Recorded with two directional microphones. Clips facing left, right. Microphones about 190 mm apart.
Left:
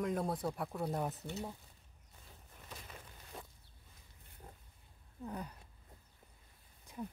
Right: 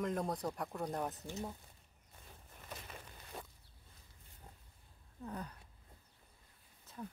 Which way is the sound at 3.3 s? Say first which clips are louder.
Right 1 dB; 65° right (ahead or behind).